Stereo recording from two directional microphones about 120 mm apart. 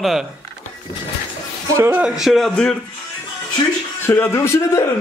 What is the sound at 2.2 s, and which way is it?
Speech, centre (ahead or behind).